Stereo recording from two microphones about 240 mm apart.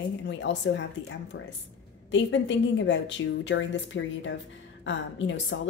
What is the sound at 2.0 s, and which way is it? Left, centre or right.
A woman's voice, left.